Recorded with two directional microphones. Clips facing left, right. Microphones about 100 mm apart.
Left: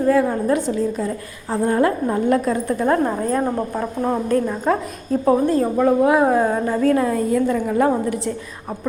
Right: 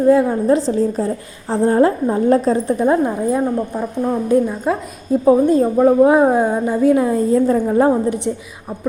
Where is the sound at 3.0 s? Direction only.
10° right (ahead or behind); by 7.9 s 30° right (ahead or behind).